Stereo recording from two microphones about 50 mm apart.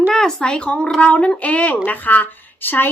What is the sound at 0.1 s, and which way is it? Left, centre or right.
A woman's voice, centre.